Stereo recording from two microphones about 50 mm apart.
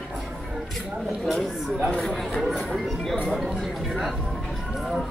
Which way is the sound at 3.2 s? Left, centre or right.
Centre.